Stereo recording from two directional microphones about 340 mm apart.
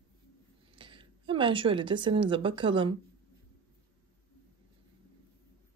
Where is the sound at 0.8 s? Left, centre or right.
Centre.